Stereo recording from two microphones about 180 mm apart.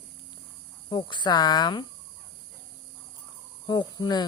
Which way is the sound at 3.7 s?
25° left (ahead or behind).